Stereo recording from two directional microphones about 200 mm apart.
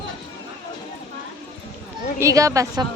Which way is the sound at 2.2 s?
15° right (ahead or behind).